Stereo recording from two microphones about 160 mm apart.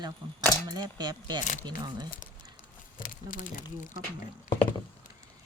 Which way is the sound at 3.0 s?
60° left (ahead or behind).